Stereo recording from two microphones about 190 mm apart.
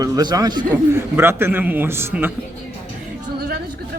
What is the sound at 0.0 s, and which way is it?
A man's voice, 20° right (ahead or behind).